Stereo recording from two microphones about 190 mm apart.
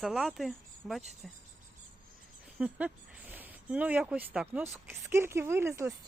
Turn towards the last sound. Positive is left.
turn(degrees=-15)  # may be behind; listen again after turning